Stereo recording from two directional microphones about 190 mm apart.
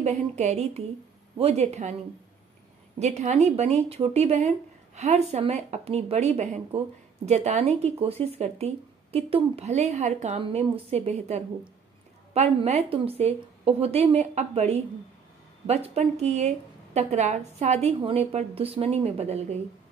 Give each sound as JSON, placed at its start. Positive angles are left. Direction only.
{"t": 0.0, "sound": "speech", "side_deg": -35}
{"t": 3.0, "sound": "speech", "side_deg": -35}